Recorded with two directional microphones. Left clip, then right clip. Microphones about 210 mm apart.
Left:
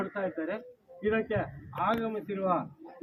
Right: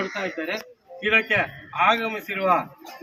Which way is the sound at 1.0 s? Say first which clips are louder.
Right 10 dB; 20° right (ahead or behind).